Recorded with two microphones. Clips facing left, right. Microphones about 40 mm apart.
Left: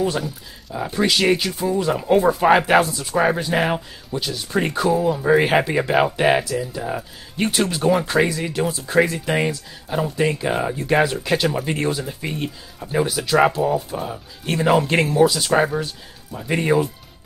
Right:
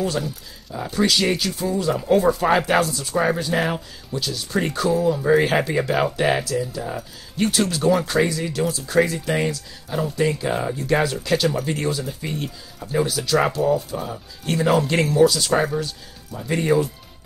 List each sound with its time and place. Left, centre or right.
0.7 s speech: centre